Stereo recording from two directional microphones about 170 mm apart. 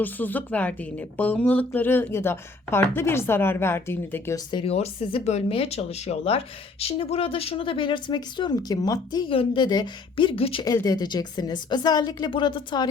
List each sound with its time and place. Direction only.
0.0 s speech: 10° left (ahead or behind)
4.5 s a woman's voice: 35° left (ahead or behind)